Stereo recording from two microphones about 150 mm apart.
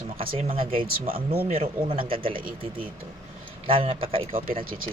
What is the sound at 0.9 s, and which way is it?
Speech, 80° right.